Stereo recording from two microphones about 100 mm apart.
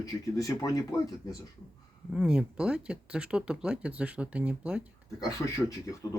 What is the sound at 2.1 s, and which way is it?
Speech, 10° right (ahead or behind).